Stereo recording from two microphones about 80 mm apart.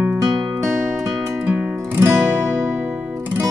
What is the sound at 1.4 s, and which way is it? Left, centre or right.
Music, centre.